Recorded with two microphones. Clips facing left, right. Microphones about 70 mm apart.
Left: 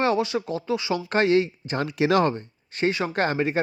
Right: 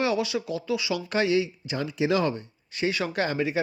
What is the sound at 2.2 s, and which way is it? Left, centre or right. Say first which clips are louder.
Speech: left 3 dB; left.